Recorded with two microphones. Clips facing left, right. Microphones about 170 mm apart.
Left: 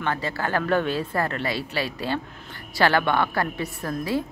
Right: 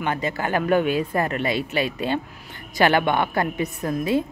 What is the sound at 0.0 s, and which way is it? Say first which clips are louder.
Speech: right 2 dB; 20° right (ahead or behind).